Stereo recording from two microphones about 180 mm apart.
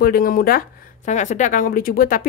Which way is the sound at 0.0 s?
55° left (ahead or behind).